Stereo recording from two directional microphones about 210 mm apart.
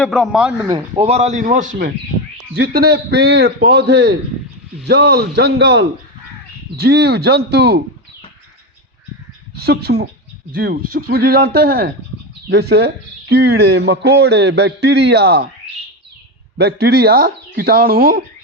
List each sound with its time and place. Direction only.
0.0 s speech: centre (ahead or behind)
0.7 s a man's voice: 25° right (ahead or behind)
2.5 s speech: 50° right (ahead or behind)
9.6 s speech: 50° right (ahead or behind)
16.6 s speech: 50° right (ahead or behind)